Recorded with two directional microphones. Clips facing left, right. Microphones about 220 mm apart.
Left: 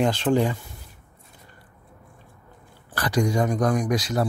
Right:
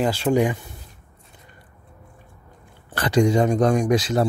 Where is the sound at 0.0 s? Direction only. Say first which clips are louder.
Right 1 dB; 10° right (ahead or behind).